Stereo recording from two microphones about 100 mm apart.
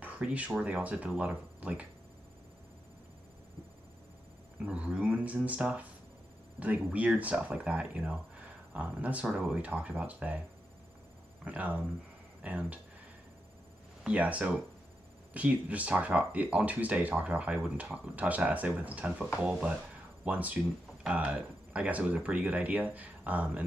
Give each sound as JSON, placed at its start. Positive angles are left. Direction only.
{"t": 0.0, "sound": "a sound", "side_deg": -15}
{"t": 0.5, "sound": "speech", "side_deg": -10}
{"t": 4.6, "sound": "speech", "side_deg": -10}
{"t": 11.4, "sound": "speech", "side_deg": -15}
{"t": 14.0, "sound": "speech", "side_deg": -15}